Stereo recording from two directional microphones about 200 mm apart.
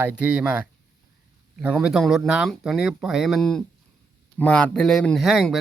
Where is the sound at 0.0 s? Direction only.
5° right (ahead or behind).